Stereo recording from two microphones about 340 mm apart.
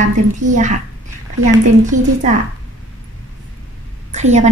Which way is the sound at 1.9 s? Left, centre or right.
Right.